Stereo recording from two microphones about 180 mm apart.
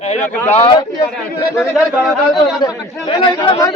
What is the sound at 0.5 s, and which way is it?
Speech, 35° left (ahead or behind).